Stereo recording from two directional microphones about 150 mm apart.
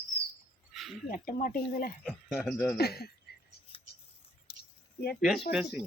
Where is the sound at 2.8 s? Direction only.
90° left.